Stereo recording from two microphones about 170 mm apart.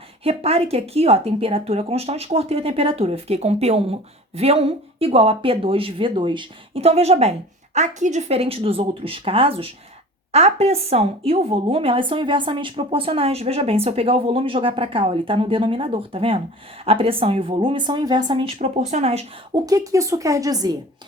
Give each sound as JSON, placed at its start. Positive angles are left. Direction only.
{"t": 0.3, "sound": "a woman's voice", "side_deg": -35}
{"t": 19.5, "sound": "speech", "side_deg": -20}